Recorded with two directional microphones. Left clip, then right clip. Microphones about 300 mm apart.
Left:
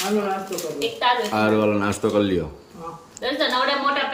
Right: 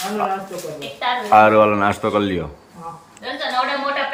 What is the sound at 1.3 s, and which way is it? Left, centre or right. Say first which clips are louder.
Speech: right 8 dB; centre.